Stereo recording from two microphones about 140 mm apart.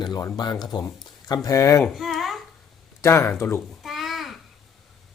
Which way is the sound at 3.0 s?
20° left (ahead or behind).